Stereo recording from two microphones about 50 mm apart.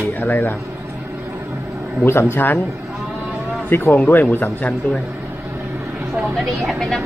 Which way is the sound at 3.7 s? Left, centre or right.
Left.